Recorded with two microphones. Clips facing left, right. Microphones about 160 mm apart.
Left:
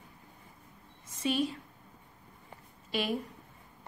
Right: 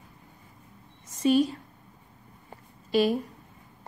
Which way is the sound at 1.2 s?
40° right (ahead or behind).